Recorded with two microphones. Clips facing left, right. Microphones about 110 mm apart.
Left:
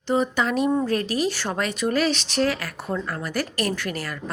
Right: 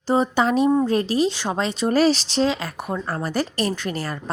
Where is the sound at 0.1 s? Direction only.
30° right (ahead or behind).